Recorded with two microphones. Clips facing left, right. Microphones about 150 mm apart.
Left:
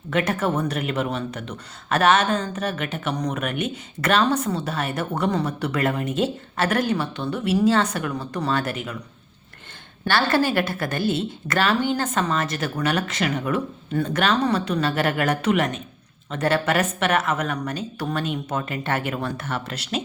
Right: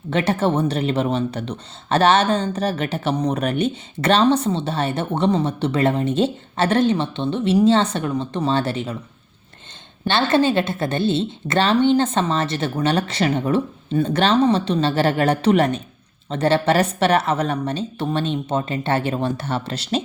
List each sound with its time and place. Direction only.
0.1 s speech: 30° right (ahead or behind)
10.1 s speech: 20° right (ahead or behind)